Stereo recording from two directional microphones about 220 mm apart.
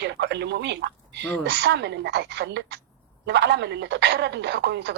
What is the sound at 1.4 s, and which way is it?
Speech, 50° right (ahead or behind).